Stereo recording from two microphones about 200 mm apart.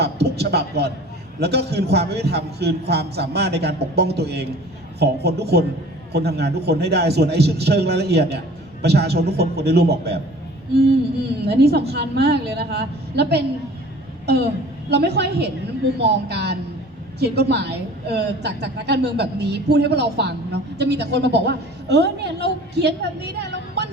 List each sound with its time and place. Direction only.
0.0 s a sound: 55° right (ahead or behind)
1.4 s a woman's voice: 55° right (ahead or behind)
11.2 s a woman's voice: 55° right (ahead or behind)
14.8 s a woman's voice: 55° right (ahead or behind)